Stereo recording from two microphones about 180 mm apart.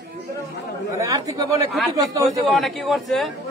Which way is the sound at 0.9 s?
20° right (ahead or behind).